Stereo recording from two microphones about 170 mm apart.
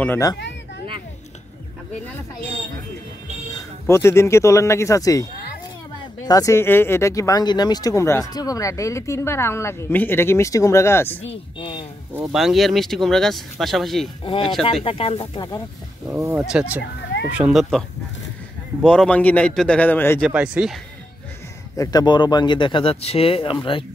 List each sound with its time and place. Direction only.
0.0 s speech: 10° left (ahead or behind)
3.8 s speech: 15° left (ahead or behind)
11.2 s speech: 30° left (ahead or behind)
12.1 s speech: 5° right (ahead or behind)
14.2 s speech: 30° left (ahead or behind)
16.1 s speech: 15° right (ahead or behind)
16.4 s speech: 5° right (ahead or behind); by 20.2 s 10° left (ahead or behind)
20.2 s speech: 5° right (ahead or behind)
21.7 s speech: 20° left (ahead or behind)